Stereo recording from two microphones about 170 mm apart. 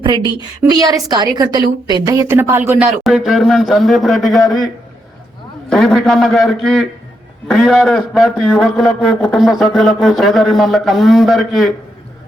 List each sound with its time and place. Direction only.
0.0 s a woman's voice: 25° right (ahead or behind); by 11.7 s centre (ahead or behind)